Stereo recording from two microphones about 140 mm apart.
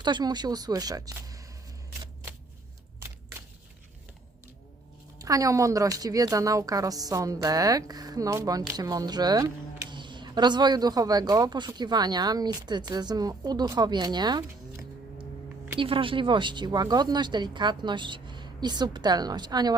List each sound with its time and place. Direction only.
0.0 s speech: 30° right (ahead or behind)
5.2 s speech: 25° right (ahead or behind)